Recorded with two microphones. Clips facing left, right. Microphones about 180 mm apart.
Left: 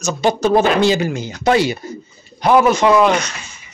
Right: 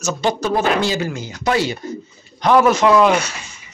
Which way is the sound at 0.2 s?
20° left (ahead or behind).